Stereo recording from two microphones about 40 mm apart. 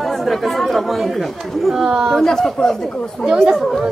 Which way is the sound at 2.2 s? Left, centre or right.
Centre.